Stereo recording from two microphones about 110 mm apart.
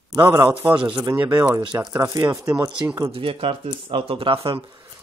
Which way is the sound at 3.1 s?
55° right (ahead or behind).